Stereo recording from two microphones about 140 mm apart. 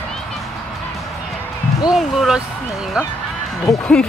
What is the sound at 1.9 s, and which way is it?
Speech, centre (ahead or behind).